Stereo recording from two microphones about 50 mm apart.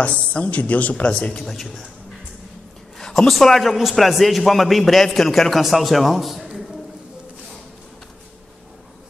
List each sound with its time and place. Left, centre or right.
0.0 s a woman's voice: left
1.3 s a man's voice: centre
3.0 s a man's voice: centre